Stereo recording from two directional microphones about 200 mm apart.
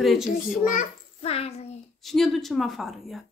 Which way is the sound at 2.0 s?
Centre (ahead or behind).